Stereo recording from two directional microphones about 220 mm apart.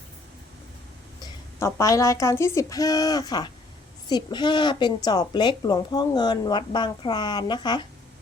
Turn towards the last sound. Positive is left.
turn(degrees=20)  # may be behind; listen again after turning